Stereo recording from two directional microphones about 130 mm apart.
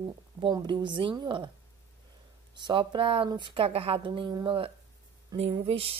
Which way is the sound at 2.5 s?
35° right (ahead or behind).